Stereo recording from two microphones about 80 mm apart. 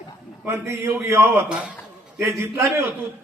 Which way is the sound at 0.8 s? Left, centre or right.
Right.